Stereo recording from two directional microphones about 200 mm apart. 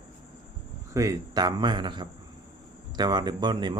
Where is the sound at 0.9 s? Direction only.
15° right (ahead or behind).